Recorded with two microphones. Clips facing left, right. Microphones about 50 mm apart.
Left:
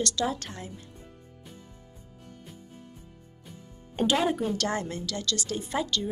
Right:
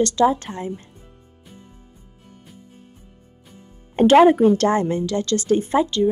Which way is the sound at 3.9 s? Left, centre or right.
Right.